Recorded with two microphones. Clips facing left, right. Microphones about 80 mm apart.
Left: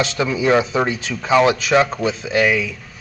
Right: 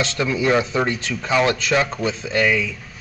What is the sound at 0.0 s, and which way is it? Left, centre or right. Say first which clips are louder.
Speech: left 2 dB; centre.